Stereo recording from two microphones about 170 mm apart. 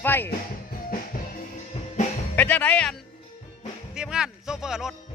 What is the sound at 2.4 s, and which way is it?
Speech, 10° left (ahead or behind).